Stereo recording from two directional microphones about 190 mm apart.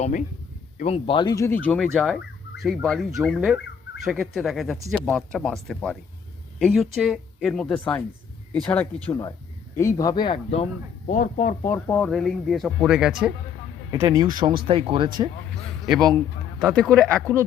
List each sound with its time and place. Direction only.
0.0 s a man's voice: 40° left (ahead or behind); by 1.5 s 20° left (ahead or behind)
1.6 s speech: 5° left (ahead or behind); by 10.7 s 30° left (ahead or behind)
11.1 s speech: 45° left (ahead or behind)
11.6 s speech: 15° left (ahead or behind); by 13.3 s 5° right (ahead or behind)
13.9 s speech: 20° right (ahead or behind)
16.6 s speech: centre (ahead or behind)